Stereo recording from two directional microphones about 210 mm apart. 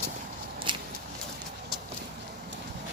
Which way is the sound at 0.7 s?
25° right (ahead or behind).